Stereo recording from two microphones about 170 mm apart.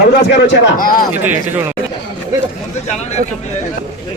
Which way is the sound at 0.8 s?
55° left (ahead or behind).